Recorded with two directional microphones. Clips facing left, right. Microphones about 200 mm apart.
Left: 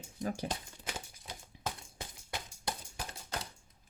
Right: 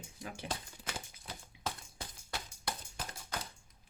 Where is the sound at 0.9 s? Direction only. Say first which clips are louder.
Left 1 dB; 15° left (ahead or behind).